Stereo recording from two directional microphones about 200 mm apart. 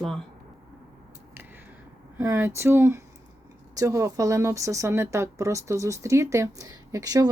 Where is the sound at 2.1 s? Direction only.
15° right (ahead or behind).